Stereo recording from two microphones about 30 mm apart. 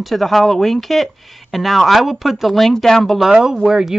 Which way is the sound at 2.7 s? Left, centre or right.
Centre.